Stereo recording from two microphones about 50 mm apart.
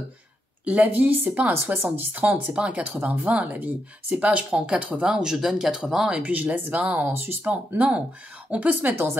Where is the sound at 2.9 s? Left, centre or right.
Right.